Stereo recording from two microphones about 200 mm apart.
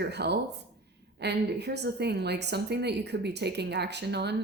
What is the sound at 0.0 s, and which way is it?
A woman's voice, 55° right (ahead or behind).